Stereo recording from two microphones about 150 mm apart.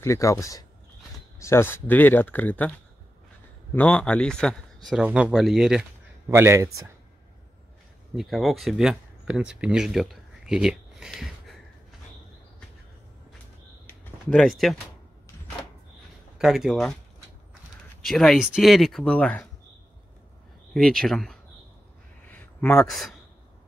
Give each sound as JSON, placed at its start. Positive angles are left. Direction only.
{"t": 0.0, "sound": "speech", "side_deg": 20}
{"t": 3.7, "sound": "speech", "side_deg": 10}
{"t": 4.8, "sound": "speech", "side_deg": -5}
{"t": 6.3, "sound": "speech", "side_deg": -15}
{"t": 8.2, "sound": "speech", "side_deg": 0}
{"t": 13.8, "sound": "a sound", "side_deg": 5}
{"t": 16.3, "sound": "speech", "side_deg": 0}
{"t": 18.0, "sound": "speech", "side_deg": 0}
{"t": 20.7, "sound": "speech", "side_deg": 5}
{"t": 22.3, "sound": "a sound", "side_deg": 10}